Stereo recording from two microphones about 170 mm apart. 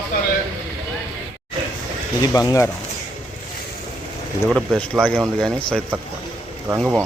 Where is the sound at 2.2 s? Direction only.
20° left (ahead or behind).